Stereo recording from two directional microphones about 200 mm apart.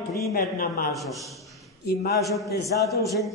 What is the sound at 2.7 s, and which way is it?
Speech, 50° left (ahead or behind).